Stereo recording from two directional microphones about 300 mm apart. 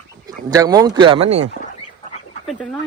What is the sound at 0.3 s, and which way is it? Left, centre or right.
A man's voice, centre.